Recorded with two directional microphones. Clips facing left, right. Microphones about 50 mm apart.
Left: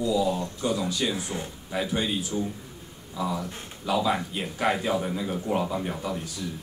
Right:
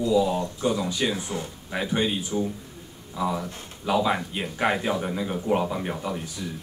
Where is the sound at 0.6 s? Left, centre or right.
Right.